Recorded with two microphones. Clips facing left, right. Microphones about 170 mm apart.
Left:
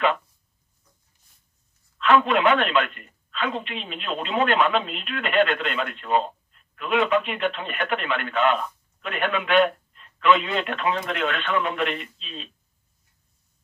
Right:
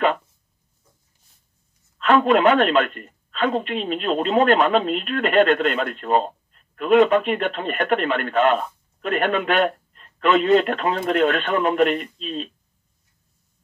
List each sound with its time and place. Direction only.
2.0 s a woman's voice: 40° right (ahead or behind)